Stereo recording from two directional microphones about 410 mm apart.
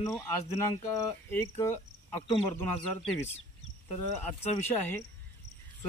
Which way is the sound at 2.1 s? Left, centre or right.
Left.